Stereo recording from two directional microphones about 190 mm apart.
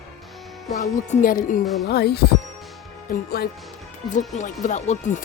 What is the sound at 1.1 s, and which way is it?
Speech, 45° left (ahead or behind).